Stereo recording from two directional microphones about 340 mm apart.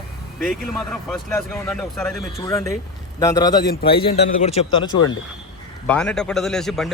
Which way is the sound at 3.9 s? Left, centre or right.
Centre.